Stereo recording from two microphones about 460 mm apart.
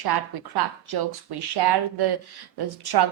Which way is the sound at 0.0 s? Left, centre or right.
Right.